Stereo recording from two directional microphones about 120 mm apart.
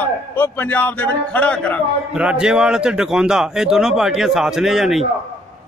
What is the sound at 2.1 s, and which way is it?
Speech, 5° right (ahead or behind).